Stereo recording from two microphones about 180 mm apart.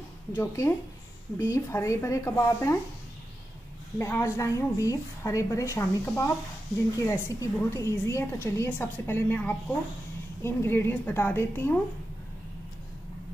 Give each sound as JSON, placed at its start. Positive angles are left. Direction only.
{"t": 0.4, "sound": "a woman's voice", "side_deg": 15}
{"t": 4.0, "sound": "a woman's voice", "side_deg": 15}